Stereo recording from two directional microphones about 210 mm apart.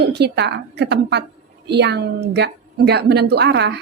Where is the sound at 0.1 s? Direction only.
55° right (ahead or behind).